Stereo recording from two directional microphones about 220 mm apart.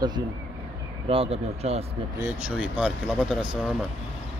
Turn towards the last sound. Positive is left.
turn(degrees=-5)  # may be behind; listen again after turning